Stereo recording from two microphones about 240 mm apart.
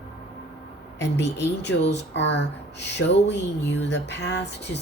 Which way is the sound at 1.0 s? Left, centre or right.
Left.